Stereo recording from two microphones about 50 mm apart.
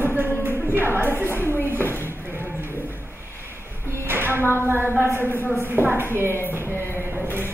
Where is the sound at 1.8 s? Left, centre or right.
Left.